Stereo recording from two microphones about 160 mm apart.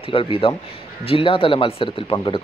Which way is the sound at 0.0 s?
35° left (ahead or behind).